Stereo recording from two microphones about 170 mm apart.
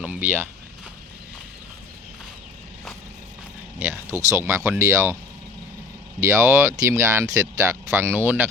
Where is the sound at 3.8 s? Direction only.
15° right (ahead or behind).